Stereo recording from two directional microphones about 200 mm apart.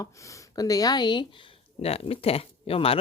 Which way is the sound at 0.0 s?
15° left (ahead or behind).